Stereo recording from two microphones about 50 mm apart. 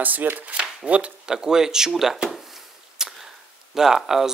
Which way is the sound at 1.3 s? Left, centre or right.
Centre.